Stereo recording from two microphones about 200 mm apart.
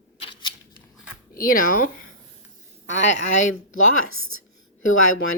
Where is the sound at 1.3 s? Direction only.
45° left (ahead or behind).